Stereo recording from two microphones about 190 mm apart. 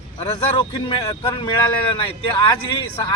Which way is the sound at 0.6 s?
25° left (ahead or behind).